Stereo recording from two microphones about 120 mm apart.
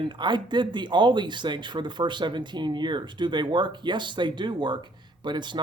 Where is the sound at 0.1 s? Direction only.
40° right (ahead or behind).